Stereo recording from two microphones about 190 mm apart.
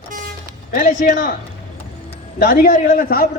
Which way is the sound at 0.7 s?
45° left (ahead or behind).